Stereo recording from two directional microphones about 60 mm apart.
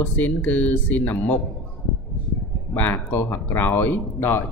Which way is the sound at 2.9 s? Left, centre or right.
Left.